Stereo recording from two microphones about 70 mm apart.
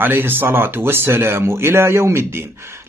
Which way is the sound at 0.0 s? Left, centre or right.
Right.